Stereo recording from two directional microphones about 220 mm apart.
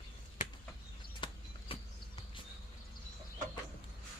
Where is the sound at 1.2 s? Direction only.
20° left (ahead or behind).